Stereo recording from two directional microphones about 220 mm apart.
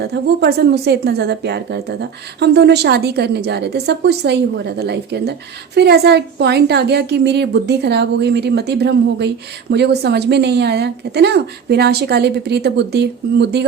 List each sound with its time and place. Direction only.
0.0 s a woman's voice: 45° right (ahead or behind)